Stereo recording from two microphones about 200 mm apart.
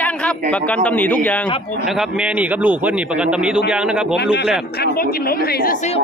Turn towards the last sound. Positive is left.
turn(degrees=50)  # may be behind; listen again after turning